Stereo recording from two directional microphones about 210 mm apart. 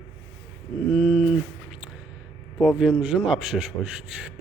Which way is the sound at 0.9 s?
Centre (ahead or behind).